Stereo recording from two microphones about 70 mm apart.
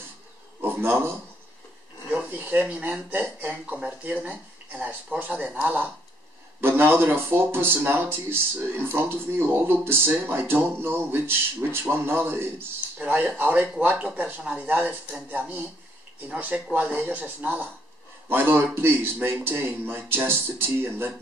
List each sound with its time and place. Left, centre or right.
0.6 s a sound: right
2.0 s speech: right
6.6 s speech: right
13.0 s speech: right